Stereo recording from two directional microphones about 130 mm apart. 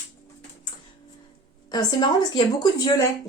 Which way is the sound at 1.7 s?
30° left (ahead or behind).